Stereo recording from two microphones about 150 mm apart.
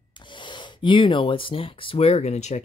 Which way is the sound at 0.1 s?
30° left (ahead or behind).